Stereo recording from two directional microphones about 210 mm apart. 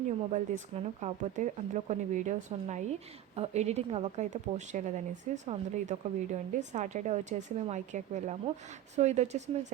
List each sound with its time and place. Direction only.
0.3 s a woman's voice: 35° right (ahead or behind)